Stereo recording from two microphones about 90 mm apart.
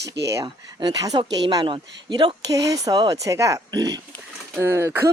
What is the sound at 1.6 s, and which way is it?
Speech, 65° right (ahead or behind).